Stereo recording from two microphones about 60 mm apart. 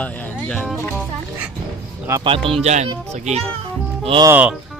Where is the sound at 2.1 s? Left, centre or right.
Right.